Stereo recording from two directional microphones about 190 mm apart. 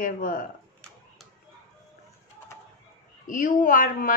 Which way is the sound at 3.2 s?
45° left (ahead or behind).